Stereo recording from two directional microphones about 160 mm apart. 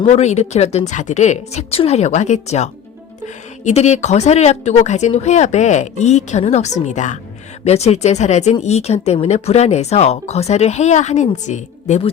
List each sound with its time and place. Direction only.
0.0 s speech: 45° left (ahead or behind)